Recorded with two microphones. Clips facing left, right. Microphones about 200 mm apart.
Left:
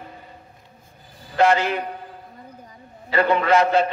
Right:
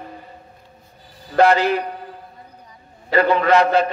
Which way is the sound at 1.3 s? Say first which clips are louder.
Right 3 dB; 35° right (ahead or behind).